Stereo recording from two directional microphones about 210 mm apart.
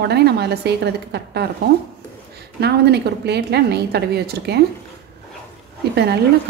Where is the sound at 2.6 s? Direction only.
50° right (ahead or behind).